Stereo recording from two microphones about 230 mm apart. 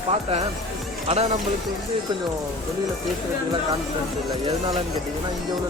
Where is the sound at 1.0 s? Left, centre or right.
Right.